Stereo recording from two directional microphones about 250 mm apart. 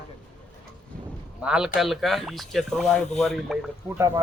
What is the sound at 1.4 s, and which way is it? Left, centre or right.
A man's voice, centre.